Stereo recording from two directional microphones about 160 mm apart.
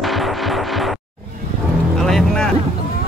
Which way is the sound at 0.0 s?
Centre (ahead or behind).